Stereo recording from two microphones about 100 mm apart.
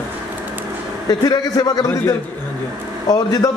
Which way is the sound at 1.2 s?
40° left (ahead or behind).